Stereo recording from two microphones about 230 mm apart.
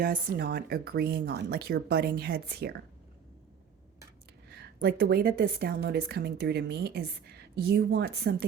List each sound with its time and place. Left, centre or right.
0.0 s a woman's voice: right
4.4 s a woman's voice: right